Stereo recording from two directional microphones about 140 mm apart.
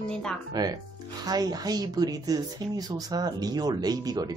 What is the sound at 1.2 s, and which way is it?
Speech, 30° right (ahead or behind).